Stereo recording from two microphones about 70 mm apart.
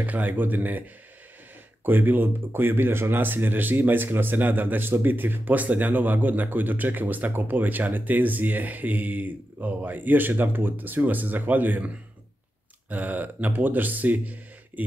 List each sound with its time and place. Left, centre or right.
0.0 s speech: right
1.9 s speech: right
12.9 s speech: right